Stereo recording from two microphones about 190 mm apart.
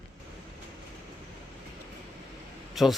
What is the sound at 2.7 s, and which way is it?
Speech, centre (ahead or behind).